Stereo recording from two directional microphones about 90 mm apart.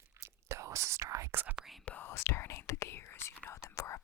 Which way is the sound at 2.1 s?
30° left (ahead or behind).